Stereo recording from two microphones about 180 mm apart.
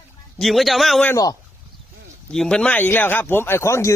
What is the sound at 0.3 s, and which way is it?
Speech, centre (ahead or behind).